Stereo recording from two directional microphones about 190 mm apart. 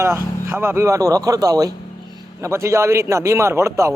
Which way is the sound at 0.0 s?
15° right (ahead or behind).